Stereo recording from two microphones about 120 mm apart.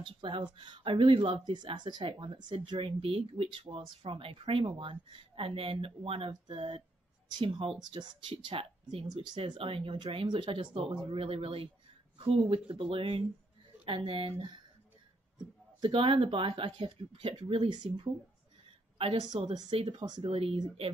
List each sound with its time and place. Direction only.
0.0 s speech: 40° right (ahead or behind)
15.8 s speech: 45° right (ahead or behind)
19.5 s speech: 40° right (ahead or behind)
20.2 s speech: 50° right (ahead or behind)